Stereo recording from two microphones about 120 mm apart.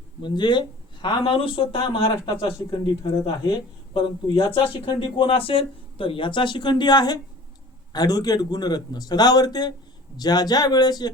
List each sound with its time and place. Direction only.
0.2 s a man's voice: 40° left (ahead or behind)